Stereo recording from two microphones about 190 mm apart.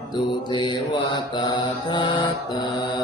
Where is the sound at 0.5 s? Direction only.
25° left (ahead or behind).